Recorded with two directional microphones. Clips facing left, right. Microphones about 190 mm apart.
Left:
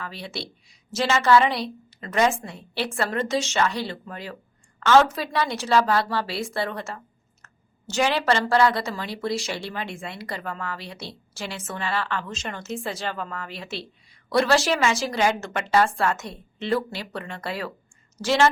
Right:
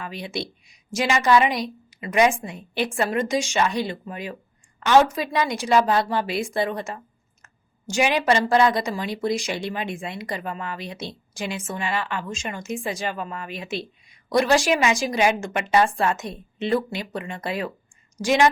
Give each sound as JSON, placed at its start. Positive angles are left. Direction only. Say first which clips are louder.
{"t": 0.0, "sound": "a woman's voice", "louder": "right 4 dB", "side_deg": -15}